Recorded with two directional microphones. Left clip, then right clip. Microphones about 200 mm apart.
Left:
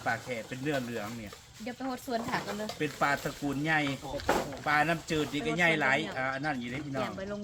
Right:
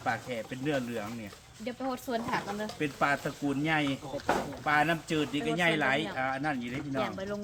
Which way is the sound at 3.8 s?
40° left (ahead or behind).